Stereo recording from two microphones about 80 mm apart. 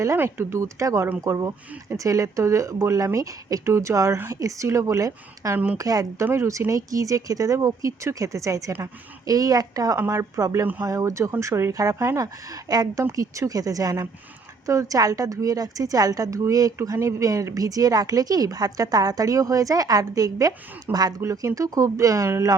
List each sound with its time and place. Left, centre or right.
0.0 s speech: right
6.2 s speech: right
10.0 s speech: right
13.0 s speech: right